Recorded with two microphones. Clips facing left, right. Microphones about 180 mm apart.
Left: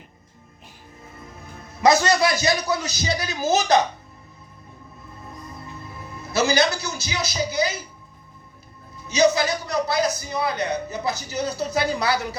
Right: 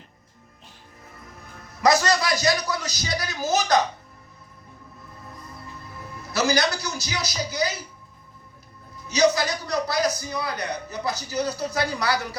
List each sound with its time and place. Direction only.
1.5 s a man's voice: 25° left (ahead or behind)
5.8 s a man's voice: 25° left (ahead or behind)
9.0 s a man's voice: 25° left (ahead or behind)